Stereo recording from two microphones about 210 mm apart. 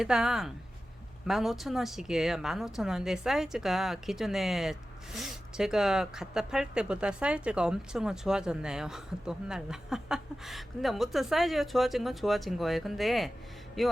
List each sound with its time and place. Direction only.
0.0 s speech: centre (ahead or behind)